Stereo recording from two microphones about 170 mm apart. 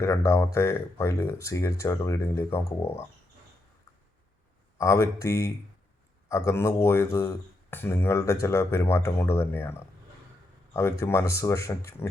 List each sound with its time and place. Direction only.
0.0 s speech: 15° left (ahead or behind)
4.8 s speech: 15° left (ahead or behind)